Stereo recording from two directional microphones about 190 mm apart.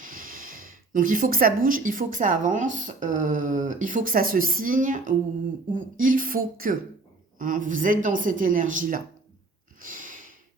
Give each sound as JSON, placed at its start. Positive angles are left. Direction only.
{"t": 0.0, "sound": "speech", "side_deg": -45}
{"t": 9.8, "sound": "snort", "side_deg": -45}